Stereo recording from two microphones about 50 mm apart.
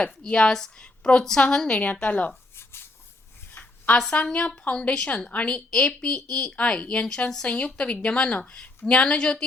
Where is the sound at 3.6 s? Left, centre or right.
Left.